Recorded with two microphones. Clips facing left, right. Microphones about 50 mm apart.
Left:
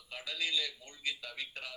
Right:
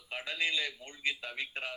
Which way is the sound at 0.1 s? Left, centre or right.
Right.